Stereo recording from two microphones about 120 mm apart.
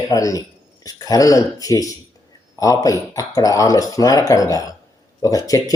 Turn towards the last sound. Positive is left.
turn(degrees=30)  # may be behind; listen again after turning